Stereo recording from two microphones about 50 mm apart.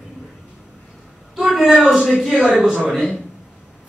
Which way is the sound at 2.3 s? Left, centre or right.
Centre.